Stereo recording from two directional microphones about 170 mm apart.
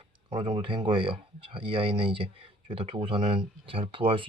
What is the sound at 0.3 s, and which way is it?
Speech, 35° right (ahead or behind).